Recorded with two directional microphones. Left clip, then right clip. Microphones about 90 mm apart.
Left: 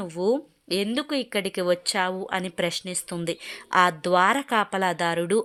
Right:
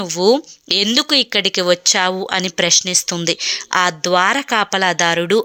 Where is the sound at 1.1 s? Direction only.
15° right (ahead or behind).